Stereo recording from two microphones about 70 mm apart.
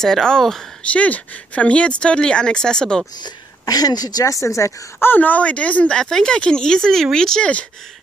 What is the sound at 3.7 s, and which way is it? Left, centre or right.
Speech, left.